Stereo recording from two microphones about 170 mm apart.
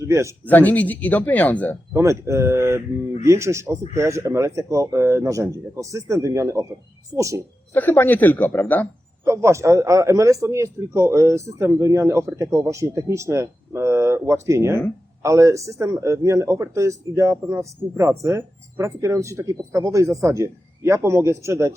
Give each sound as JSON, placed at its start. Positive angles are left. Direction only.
{"t": 0.1, "sound": "a man's voice", "side_deg": -15}
{"t": 0.4, "sound": "speech", "side_deg": 10}
{"t": 1.9, "sound": "a man's voice", "side_deg": -15}
{"t": 7.7, "sound": "speech", "side_deg": 10}
{"t": 9.2, "sound": "a man's voice", "side_deg": -15}